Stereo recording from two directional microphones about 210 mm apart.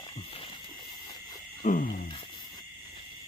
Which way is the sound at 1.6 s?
40° left (ahead or behind).